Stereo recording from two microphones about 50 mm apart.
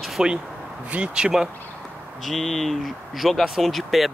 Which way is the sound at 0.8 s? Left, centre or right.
Right.